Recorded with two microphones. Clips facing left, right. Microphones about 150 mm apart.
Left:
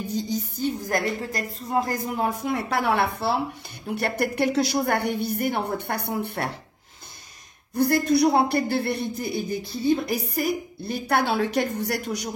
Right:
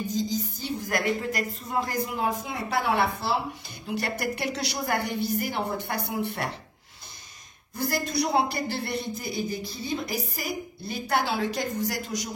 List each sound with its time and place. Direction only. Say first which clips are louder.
0.0 s music: left 1 dB; 60° left (ahead or behind)
0.8 s a man's voice: left 1 dB; 35° left (ahead or behind)
2.4 s a woman's voice: left 3 dB; 65° left (ahead or behind)
7.7 s a woman's voice: left 8 dB; 60° left (ahead or behind)